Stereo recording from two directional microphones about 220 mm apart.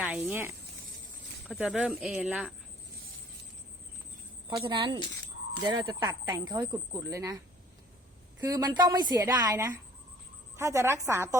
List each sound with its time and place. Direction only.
0.0 s speech: 5° right (ahead or behind)
4.4 s a woman's voice: 20° right (ahead or behind)